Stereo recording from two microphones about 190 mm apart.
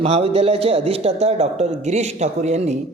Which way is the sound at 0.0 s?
30° right (ahead or behind).